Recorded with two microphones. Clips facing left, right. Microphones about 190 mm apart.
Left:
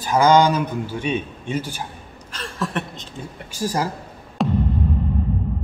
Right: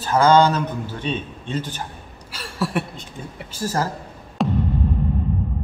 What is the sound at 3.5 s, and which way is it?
Speech, 15° left (ahead or behind).